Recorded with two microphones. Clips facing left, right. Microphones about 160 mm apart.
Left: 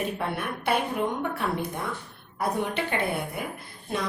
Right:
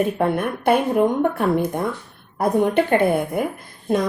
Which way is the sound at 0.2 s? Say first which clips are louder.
Right 10 dB; 50° right (ahead or behind).